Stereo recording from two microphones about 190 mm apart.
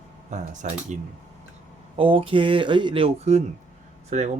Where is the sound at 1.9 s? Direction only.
30° right (ahead or behind).